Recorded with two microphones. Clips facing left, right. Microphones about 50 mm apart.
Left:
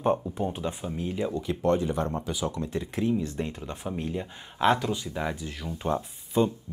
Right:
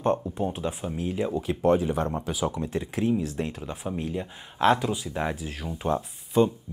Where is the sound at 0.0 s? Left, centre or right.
Centre.